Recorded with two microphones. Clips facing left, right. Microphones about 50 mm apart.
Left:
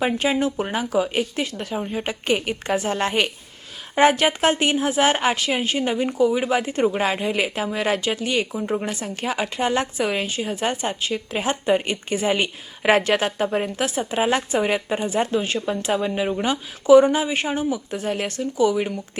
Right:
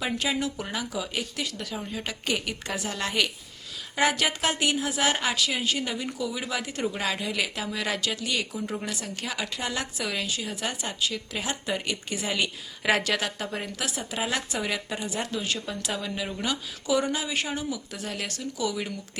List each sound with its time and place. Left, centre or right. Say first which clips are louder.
0.2 s a woman's voice: left 7 dB; left